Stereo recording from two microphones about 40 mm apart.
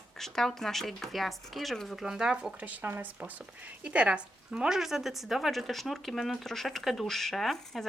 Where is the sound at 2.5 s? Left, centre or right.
Right.